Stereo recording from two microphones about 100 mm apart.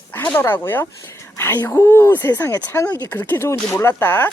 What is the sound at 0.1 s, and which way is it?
Speech, 20° left (ahead or behind).